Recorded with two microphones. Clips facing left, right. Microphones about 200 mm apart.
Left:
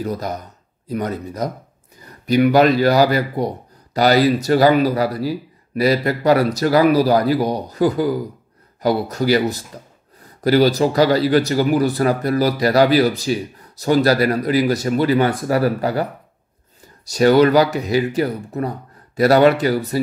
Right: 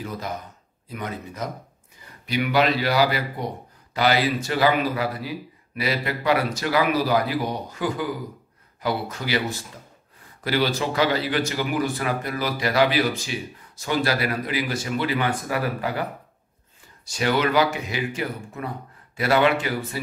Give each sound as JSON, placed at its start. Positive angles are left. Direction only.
{"t": 0.0, "sound": "speech", "side_deg": 40}